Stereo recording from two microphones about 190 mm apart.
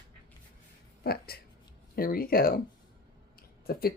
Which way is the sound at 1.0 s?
55° left (ahead or behind).